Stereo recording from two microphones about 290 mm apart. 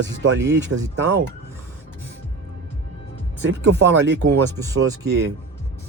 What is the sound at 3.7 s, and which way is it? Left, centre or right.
Speech, right.